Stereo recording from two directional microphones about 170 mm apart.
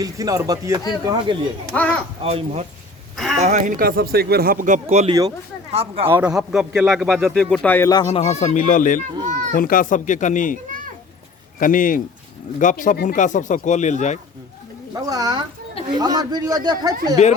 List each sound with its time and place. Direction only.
0.0 s a man's voice: 20° right (ahead or behind)
1.7 s speech: 10° left (ahead or behind)
2.2 s speech: 40° right (ahead or behind)
3.8 s speech: 65° right (ahead or behind); by 5.0 s 45° right (ahead or behind)
5.0 s a man's voice: 20° right (ahead or behind)
5.7 s speech: 35° right (ahead or behind)
6.1 s a man's voice: 15° right (ahead or behind)
6.3 s speech: centre (ahead or behind)
7.9 s speech: 25° left (ahead or behind)
8.2 s speech: 40° left (ahead or behind)
9.2 s a child's voice: 45° right (ahead or behind)
9.6 s speech: 55° left (ahead or behind)
11.6 s speech: 55° left (ahead or behind)
14.9 s a man's voice: 20° right (ahead or behind)